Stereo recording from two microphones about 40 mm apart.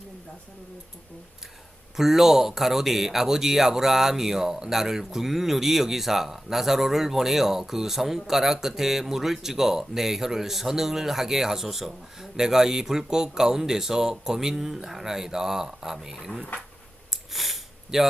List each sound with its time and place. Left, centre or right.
2.0 s speech: centre
17.1 s sniff: centre